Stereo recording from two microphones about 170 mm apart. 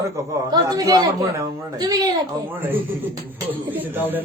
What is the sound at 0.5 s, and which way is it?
A man's voice, 20° right (ahead or behind).